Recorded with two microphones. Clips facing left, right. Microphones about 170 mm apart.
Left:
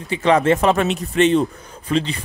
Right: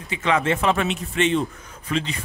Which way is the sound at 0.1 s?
35° left (ahead or behind).